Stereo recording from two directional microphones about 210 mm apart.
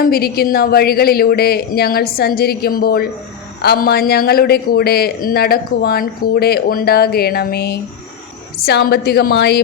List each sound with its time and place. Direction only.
0.0 s a man's voice: 45° left (ahead or behind)